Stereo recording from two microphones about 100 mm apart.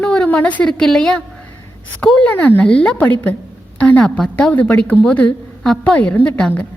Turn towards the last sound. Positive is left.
turn(degrees=15)  # may be behind; listen again after turning